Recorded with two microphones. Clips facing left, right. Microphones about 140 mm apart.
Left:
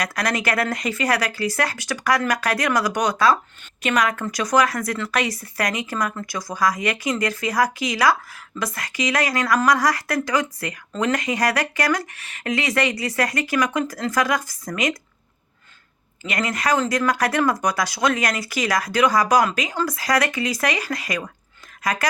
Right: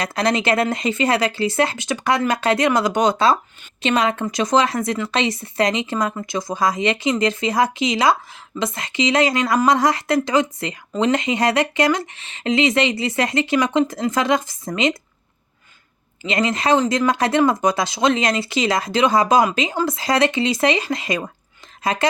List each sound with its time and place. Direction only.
0.0 s speech: 25° right (ahead or behind)
16.2 s speech: 25° right (ahead or behind)